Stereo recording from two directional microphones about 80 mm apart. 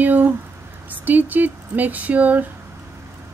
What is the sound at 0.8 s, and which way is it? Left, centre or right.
Speech, right.